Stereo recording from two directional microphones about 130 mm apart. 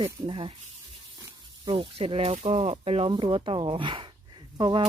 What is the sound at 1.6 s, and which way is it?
Speech, 40° right (ahead or behind).